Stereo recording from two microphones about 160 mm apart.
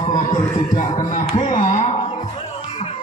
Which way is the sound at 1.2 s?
40° left (ahead or behind).